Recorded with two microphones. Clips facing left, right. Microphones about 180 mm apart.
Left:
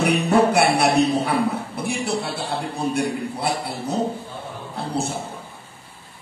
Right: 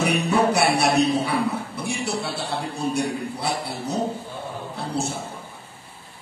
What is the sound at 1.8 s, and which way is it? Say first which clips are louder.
A man's voice: left 3 dB; 55° left (ahead or behind).